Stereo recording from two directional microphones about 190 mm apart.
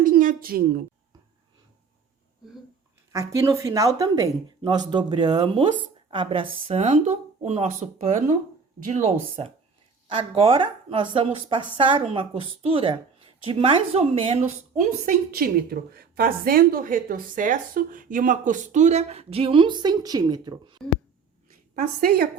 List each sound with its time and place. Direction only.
0.0 s a woman's voice: 45° right (ahead or behind)
3.1 s a woman's voice: 15° right (ahead or behind)
14.8 s a woman's voice: 50° right (ahead or behind); by 20.7 s 20° right (ahead or behind)
21.8 s a woman's voice: 50° right (ahead or behind)